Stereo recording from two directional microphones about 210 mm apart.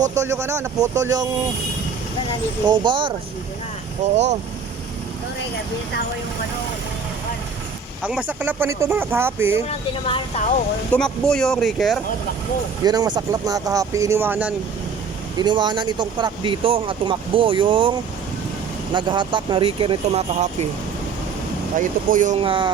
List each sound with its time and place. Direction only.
0.1 s speech: 15° right (ahead or behind)
2.6 s speech: 20° right (ahead or behind)
4.0 s speech: 35° right (ahead or behind)
8.0 s speech: 5° right (ahead or behind)
9.6 s speech: 25° left (ahead or behind)
10.9 s speech: 5° left (ahead or behind)
12.8 s speech: 20° right (ahead or behind)
15.4 s speech: 20° right (ahead or behind)
18.9 s speech: 20° right (ahead or behind)
21.8 s speech: 40° right (ahead or behind)
22.4 s speech: 25° right (ahead or behind)